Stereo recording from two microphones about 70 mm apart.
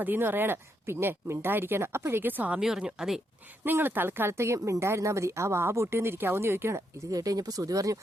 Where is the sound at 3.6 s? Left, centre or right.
Right.